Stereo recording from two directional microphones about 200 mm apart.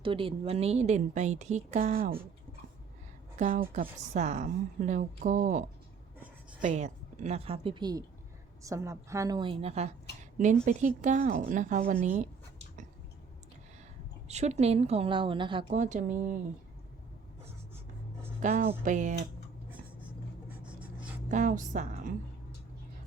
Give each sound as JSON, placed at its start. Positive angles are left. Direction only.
{"t": 0.0, "sound": "a woman's voice", "side_deg": -25}
{"t": 3.3, "sound": "a woman's voice", "side_deg": -40}
{"t": 14.3, "sound": "a woman's voice", "side_deg": -35}
{"t": 15.8, "sound": "a woman's voice", "side_deg": -40}
{"t": 18.4, "sound": "a woman's voice", "side_deg": -30}
{"t": 20.7, "sound": "writing", "side_deg": -5}
{"t": 21.2, "sound": "a woman's voice", "side_deg": -40}